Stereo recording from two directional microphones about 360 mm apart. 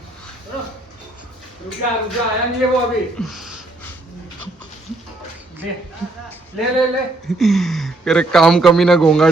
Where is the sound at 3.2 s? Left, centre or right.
Centre.